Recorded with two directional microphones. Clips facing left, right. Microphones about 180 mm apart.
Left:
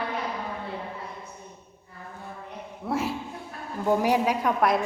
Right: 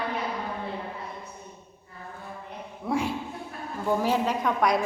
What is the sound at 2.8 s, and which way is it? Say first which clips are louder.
Speech: right 1 dB; 5° left (ahead or behind).